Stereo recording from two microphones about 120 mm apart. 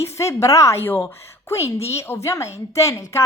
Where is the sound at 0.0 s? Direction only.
25° left (ahead or behind).